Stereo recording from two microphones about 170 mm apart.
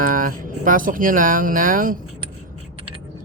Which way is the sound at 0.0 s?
55° right (ahead or behind).